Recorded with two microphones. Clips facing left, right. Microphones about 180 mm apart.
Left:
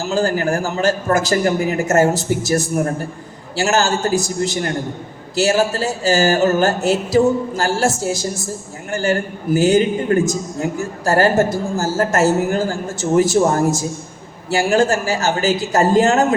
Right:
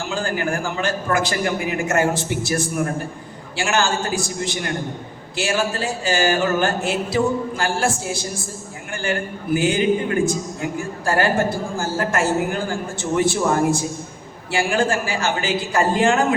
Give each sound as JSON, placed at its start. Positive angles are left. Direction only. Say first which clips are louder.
{"t": 0.0, "sound": "a woman's voice", "louder": "left 6 dB", "side_deg": 40}